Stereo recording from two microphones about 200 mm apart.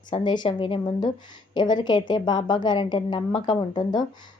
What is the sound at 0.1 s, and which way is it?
A woman's voice, 25° left (ahead or behind).